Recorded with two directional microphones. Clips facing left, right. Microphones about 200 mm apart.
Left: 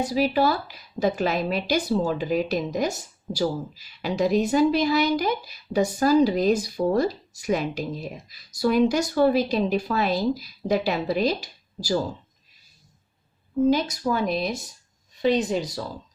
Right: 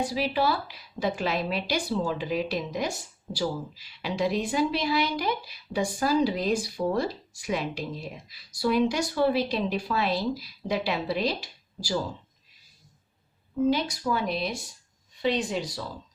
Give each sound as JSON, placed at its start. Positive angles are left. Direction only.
{"t": 0.0, "sound": "a woman's voice", "side_deg": 45}
{"t": 13.9, "sound": "a woman's voice", "side_deg": 45}